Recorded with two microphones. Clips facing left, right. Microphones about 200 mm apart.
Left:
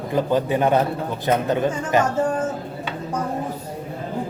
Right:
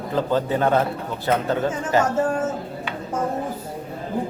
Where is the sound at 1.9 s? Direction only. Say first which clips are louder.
Even; 20° left (ahead or behind).